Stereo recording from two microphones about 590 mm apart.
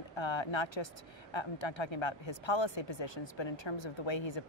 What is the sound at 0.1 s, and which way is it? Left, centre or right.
Speech, left.